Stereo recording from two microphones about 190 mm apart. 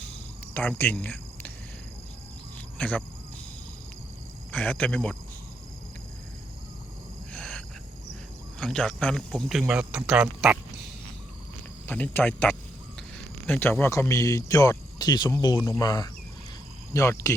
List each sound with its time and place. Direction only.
0.5 s speech: 10° left (ahead or behind)
2.7 s speech: 5° left (ahead or behind)
4.5 s speech: 10° left (ahead or behind)
7.3 s frog: 5° left (ahead or behind)
8.5 s speech: 5° left (ahead or behind)
11.9 s speech: 10° left (ahead or behind)